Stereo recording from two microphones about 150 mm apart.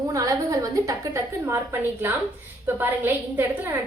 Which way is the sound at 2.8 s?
15° right (ahead or behind).